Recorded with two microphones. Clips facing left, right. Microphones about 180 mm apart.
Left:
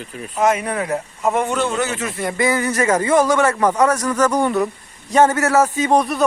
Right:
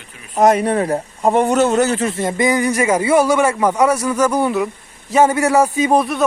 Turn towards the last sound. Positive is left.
turn(degrees=0)  # may be behind; listen again after turning